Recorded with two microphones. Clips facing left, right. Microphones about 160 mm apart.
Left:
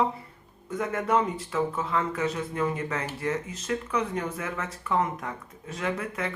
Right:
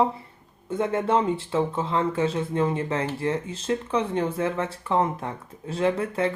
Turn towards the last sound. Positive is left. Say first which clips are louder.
# right 7 dB
turn(degrees=-30)  # may be behind; listen again after turning